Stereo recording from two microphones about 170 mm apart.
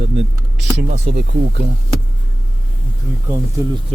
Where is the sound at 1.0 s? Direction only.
65° right (ahead or behind).